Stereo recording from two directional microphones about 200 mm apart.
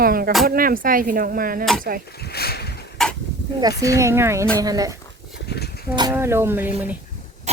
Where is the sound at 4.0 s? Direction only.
15° right (ahead or behind).